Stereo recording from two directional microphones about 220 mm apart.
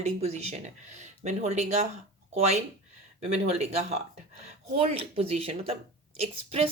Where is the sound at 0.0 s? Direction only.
30° right (ahead or behind).